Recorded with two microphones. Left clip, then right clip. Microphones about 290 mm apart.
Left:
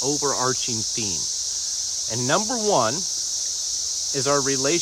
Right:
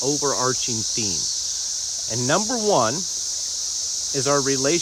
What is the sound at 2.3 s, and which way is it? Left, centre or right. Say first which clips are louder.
Speech: right 1 dB; centre.